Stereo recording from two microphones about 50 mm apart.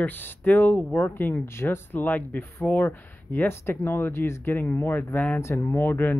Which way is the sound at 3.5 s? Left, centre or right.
Left.